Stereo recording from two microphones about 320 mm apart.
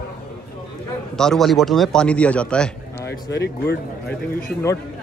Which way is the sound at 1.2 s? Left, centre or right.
Centre.